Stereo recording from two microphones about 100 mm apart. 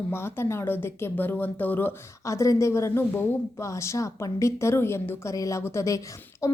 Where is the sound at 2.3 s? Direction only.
30° left (ahead or behind).